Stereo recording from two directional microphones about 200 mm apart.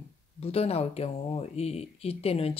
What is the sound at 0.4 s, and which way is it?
Speech, 30° left (ahead or behind).